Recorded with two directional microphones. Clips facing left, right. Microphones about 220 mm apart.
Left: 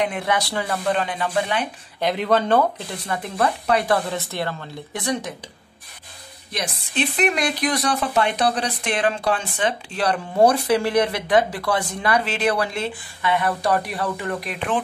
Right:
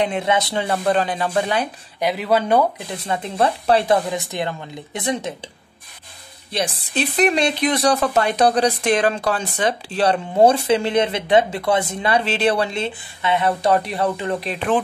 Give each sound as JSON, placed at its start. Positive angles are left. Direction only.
{"t": 0.0, "sound": "speech", "side_deg": -25}
{"t": 0.9, "sound": "speech", "side_deg": -35}
{"t": 2.0, "sound": "speech", "side_deg": -10}
{"t": 3.1, "sound": "speech", "side_deg": -30}
{"t": 6.5, "sound": "speech", "side_deg": -30}
{"t": 10.0, "sound": "speech", "side_deg": -25}